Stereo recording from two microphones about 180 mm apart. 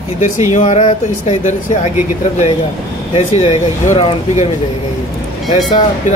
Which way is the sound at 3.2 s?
35° left (ahead or behind).